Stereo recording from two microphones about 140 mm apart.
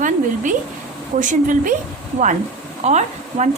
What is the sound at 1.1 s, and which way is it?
Speech, 65° right (ahead or behind).